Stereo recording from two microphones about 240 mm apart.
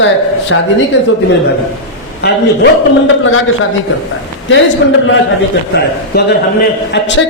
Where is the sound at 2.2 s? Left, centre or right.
Left.